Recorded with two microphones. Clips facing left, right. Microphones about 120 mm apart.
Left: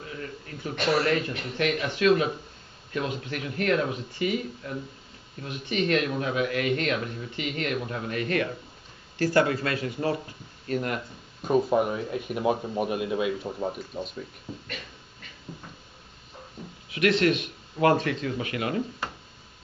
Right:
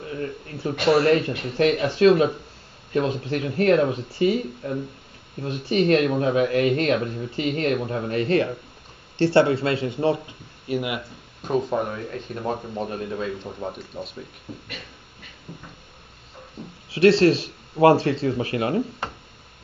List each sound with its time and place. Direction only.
0.0 s a sound: 40° right (ahead or behind)
0.8 s speech: 35° right (ahead or behind)
10.7 s speech: 10° right (ahead or behind); by 13.5 s 10° left (ahead or behind)
13.6 s speech: centre (ahead or behind)
16.9 s speech: 30° right (ahead or behind)